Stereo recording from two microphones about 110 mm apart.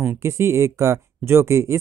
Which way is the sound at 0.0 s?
25° right (ahead or behind).